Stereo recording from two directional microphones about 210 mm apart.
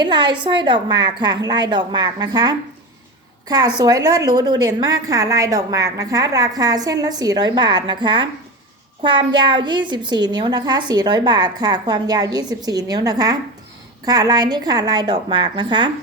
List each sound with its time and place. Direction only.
0.0 s a woman's voice: 20° right (ahead or behind)
3.8 s a woman's voice: 15° right (ahead or behind)